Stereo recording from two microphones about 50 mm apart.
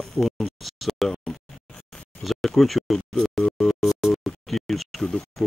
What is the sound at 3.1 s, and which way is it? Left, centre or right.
Music, centre.